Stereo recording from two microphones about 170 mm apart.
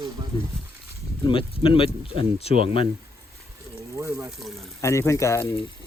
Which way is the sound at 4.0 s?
15° right (ahead or behind).